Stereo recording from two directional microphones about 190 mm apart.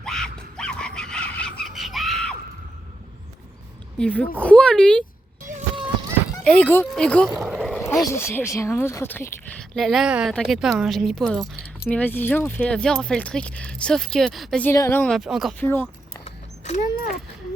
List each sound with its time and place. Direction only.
0.0 s a sound: 5° left (ahead or behind)
1.6 s screaming: centre (ahead or behind)
3.9 s speech: 5° left (ahead or behind)
6.3 s speech: 5° left (ahead or behind)
7.3 s vehicle: centre (ahead or behind)
8.1 s speech: 15° left (ahead or behind)
9.7 s speech: centre (ahead or behind)
15.6 s a sound: 10° left (ahead or behind)
16.2 s horse: 35° left (ahead or behind)